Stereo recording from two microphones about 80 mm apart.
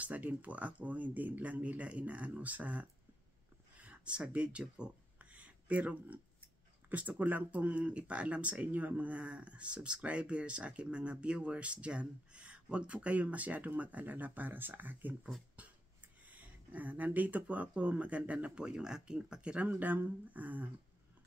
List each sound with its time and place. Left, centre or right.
0.0 s speech: centre
16.3 s speech: right